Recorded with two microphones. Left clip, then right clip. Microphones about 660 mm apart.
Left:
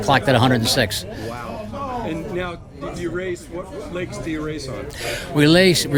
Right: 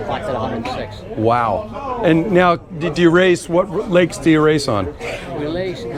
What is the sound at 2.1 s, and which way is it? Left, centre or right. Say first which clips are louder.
Speech: right 14 dB; right.